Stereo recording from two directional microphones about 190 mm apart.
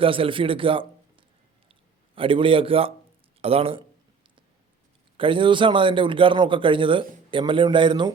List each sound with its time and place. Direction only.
0.0 s a man's voice: 30° right (ahead or behind)
5.1 s a man's voice: 25° right (ahead or behind)